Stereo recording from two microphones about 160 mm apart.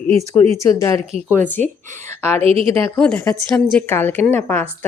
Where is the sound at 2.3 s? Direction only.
35° right (ahead or behind).